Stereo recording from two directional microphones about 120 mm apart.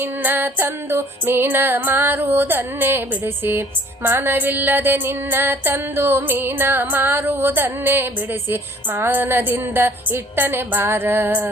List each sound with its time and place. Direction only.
0.0 s music: 15° right (ahead or behind)